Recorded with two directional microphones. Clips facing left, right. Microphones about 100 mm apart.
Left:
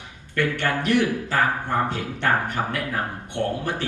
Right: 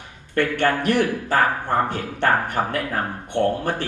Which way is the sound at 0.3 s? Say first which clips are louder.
Right 3 dB; 50° right (ahead or behind).